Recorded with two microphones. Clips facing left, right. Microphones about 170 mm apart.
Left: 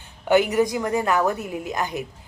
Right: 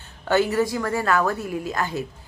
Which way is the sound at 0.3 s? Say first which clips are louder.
Left 2 dB; 15° left (ahead or behind).